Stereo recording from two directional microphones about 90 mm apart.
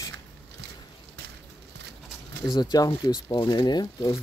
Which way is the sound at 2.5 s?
55° left (ahead or behind).